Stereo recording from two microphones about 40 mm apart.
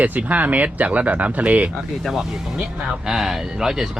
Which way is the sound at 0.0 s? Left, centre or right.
Right.